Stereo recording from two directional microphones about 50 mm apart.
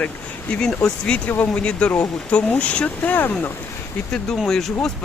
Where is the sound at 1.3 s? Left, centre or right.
Left.